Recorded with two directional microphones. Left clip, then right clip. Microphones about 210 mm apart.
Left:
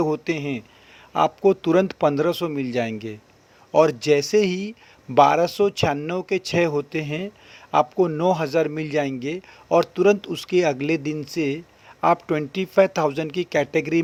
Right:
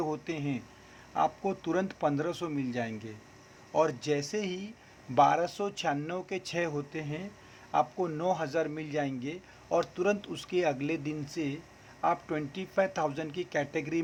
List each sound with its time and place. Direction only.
0.0 s a man's voice: 35° left (ahead or behind)